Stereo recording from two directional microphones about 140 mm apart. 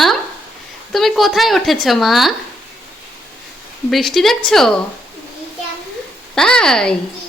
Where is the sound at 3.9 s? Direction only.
Centre (ahead or behind).